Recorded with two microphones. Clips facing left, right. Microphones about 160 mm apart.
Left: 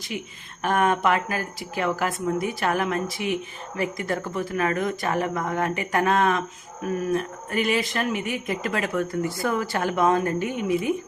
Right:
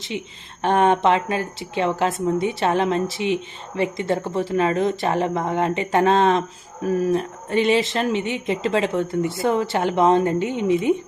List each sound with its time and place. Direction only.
0.6 s speech: 25° right (ahead or behind)